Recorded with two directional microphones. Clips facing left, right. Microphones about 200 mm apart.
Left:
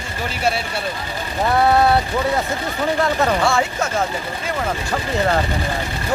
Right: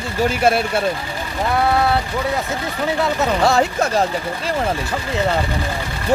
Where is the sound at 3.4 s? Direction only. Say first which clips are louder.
Right 3 dB; 40° right (ahead or behind).